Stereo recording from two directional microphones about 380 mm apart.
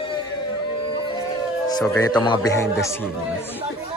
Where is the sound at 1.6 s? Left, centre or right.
Centre.